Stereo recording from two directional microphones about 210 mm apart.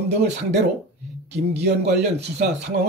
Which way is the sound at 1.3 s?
55° right (ahead or behind).